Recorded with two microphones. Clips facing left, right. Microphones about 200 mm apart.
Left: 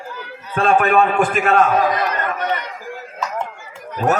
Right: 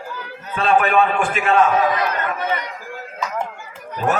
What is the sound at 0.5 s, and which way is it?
Speech, 45° left (ahead or behind).